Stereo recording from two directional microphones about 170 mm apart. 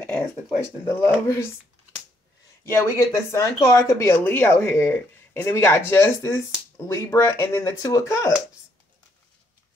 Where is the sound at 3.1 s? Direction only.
20° left (ahead or behind).